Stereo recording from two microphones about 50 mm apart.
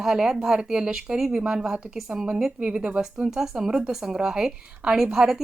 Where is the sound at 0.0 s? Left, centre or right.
Centre.